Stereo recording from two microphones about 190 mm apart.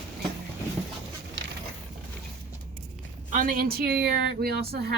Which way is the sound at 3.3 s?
45° right (ahead or behind).